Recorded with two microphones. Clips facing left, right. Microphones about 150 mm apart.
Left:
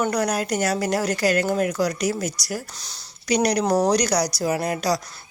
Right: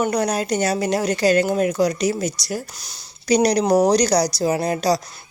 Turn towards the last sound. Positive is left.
turn(degrees=-30)  # may be behind; listen again after turning